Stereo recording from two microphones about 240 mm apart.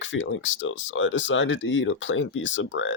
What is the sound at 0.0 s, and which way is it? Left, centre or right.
Speech, left.